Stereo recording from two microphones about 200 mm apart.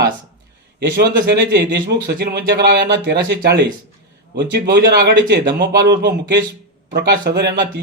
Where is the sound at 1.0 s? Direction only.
55° right (ahead or behind).